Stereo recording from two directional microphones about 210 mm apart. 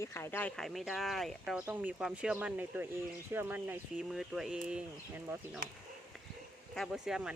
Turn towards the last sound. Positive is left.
turn(degrees=-5)  # may be behind; listen again after turning